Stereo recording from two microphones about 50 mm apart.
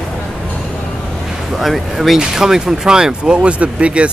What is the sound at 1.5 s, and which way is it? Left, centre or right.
Speech, centre.